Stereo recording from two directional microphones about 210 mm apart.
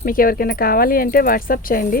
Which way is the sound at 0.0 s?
40° left (ahead or behind).